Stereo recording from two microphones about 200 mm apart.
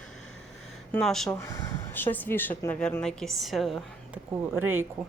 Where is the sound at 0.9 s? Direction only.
Centre (ahead or behind).